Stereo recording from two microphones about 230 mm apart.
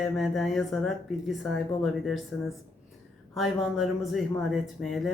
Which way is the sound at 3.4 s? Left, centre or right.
Centre.